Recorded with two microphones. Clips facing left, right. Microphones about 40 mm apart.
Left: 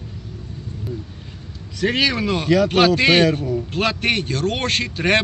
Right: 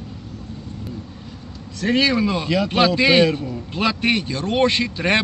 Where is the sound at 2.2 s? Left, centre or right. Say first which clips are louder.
Left 3 dB; left.